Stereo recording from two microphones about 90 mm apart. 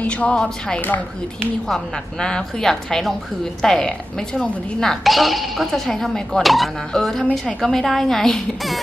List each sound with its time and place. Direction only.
0.0 s speech: 15° left (ahead or behind)
1.7 s speech: 10° left (ahead or behind)